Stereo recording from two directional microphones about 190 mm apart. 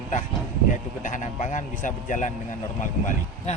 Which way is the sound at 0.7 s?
40° left (ahead or behind).